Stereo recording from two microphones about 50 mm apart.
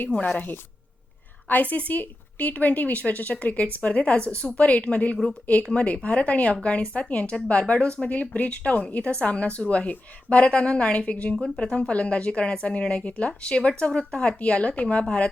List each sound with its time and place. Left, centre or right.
1.5 s a woman's voice: left
9.0 s a woman's voice: left
11.3 s speech: centre
11.6 s a woman's voice: left